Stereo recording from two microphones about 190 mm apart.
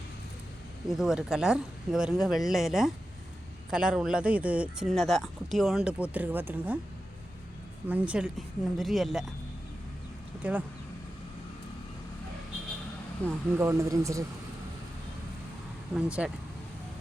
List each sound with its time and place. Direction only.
0.9 s speech: centre (ahead or behind)
7.9 s speech: 10° right (ahead or behind)
10.4 s speech: 5° right (ahead or behind)
13.2 s speech: 15° right (ahead or behind)
16.0 s speech: 5° right (ahead or behind)